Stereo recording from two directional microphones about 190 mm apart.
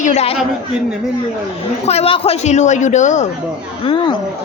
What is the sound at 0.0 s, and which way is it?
Speech, 35° left (ahead or behind).